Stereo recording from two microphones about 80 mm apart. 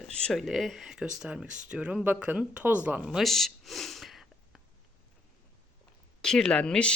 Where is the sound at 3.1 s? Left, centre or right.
Centre.